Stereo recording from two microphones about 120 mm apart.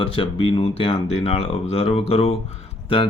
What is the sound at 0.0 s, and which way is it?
Speech, 50° left (ahead or behind).